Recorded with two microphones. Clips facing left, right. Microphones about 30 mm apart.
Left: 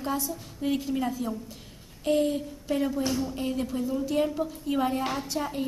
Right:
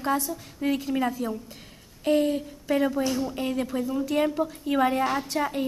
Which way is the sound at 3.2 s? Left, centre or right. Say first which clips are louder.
Right 2 dB; right.